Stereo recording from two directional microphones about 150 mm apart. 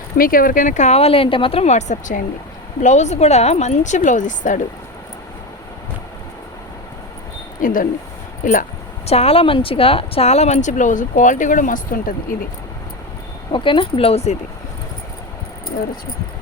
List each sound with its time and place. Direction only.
0.2 s speech: 70° left (ahead or behind)
7.6 s speech: 65° left (ahead or behind)
9.0 s speech: 45° left (ahead or behind); by 12.1 s 70° left (ahead or behind)
13.5 s speech: 35° left (ahead or behind)